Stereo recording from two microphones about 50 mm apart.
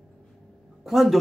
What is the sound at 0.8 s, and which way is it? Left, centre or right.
Speech, centre.